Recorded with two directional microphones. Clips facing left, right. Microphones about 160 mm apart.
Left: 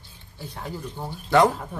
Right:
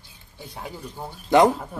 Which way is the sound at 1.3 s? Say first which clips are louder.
Right 2 dB; 15° right (ahead or behind).